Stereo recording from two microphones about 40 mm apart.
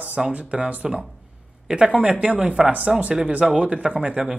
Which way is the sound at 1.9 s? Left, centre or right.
Right.